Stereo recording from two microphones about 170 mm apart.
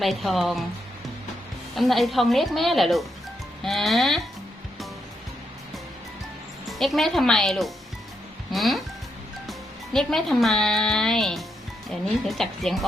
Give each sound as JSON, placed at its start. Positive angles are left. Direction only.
{"t": 0.0, "sound": "a woman's voice", "side_deg": 0}
{"t": 1.7, "sound": "a woman's voice", "side_deg": 0}
{"t": 6.7, "sound": "a woman's voice", "side_deg": 0}